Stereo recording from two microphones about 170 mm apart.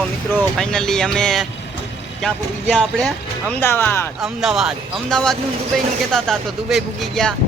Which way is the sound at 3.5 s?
15° left (ahead or behind).